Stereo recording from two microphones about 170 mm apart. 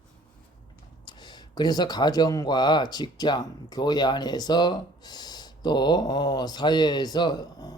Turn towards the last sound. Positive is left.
turn(degrees=25)  # may be behind; listen again after turning